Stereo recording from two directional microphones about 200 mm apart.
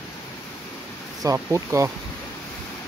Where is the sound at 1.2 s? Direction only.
15° right (ahead or behind).